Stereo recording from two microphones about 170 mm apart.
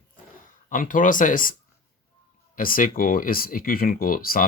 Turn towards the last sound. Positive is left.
turn(degrees=55)  # may be behind; listen again after turning